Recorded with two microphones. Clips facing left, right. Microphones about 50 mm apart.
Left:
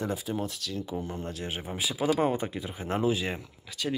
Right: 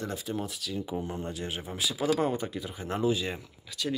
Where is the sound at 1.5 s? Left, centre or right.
Left.